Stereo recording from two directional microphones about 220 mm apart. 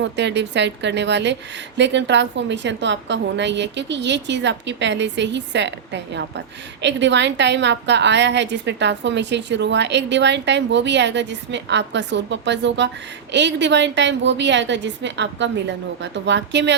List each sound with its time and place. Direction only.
0.0 s a woman's voice: 50° right (ahead or behind)